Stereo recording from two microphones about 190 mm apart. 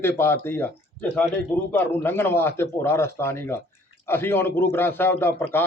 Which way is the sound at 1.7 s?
10° left (ahead or behind).